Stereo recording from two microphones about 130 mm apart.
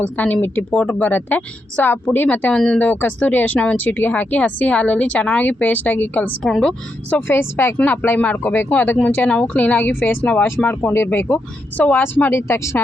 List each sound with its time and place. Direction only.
0.0 s speech: 10° left (ahead or behind)